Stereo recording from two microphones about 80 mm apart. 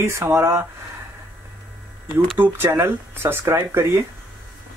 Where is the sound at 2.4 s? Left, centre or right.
Right.